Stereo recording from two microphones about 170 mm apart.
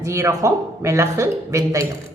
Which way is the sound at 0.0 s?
15° right (ahead or behind).